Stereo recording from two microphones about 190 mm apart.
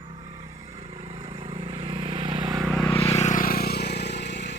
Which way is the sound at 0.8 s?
30° right (ahead or behind).